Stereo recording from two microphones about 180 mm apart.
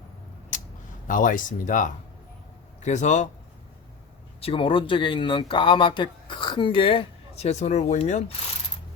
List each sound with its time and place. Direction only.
0.5 s a sound: 45° left (ahead or behind)
1.0 s speech: 50° left (ahead or behind)
4.4 s speech: 30° left (ahead or behind)